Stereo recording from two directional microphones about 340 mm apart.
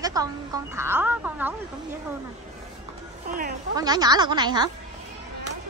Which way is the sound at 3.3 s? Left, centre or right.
Right.